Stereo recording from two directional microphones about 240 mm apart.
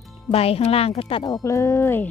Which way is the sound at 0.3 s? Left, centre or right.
Left.